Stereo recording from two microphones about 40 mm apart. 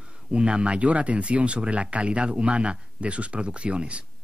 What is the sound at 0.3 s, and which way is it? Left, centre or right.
Speech, right.